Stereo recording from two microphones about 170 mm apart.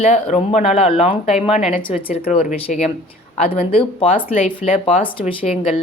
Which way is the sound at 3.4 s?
35° left (ahead or behind).